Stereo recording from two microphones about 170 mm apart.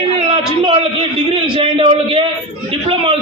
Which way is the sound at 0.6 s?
30° right (ahead or behind).